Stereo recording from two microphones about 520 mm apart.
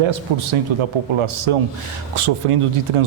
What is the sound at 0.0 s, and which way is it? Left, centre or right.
A man's voice, right.